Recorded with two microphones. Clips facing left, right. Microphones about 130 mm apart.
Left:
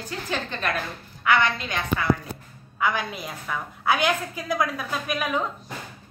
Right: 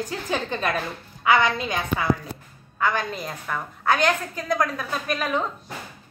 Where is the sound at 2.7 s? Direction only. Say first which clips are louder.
Right 1 dB; 10° left (ahead or behind).